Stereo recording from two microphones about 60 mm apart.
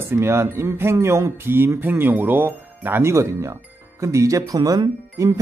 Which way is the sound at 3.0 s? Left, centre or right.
Right.